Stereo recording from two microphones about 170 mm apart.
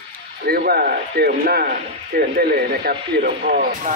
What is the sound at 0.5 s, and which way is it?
Speech, 60° right (ahead or behind).